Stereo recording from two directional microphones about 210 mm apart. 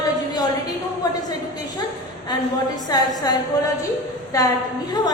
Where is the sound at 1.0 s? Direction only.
15° left (ahead or behind).